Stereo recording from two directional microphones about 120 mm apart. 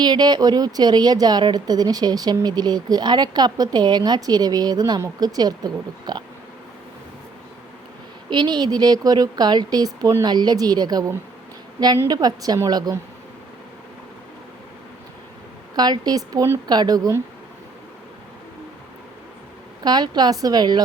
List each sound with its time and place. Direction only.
0.0 s a woman's voice: 35° right (ahead or behind)
8.3 s a woman's voice: 40° right (ahead or behind)
15.7 s a woman's voice: 35° right (ahead or behind)
19.8 s a woman's voice: 35° right (ahead or behind)